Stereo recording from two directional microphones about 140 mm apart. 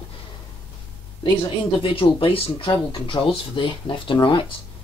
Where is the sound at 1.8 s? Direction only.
40° left (ahead or behind).